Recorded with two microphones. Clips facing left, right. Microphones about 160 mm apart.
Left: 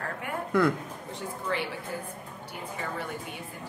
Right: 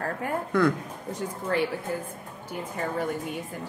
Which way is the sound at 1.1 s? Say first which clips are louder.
Right 4 dB; 45° right (ahead or behind).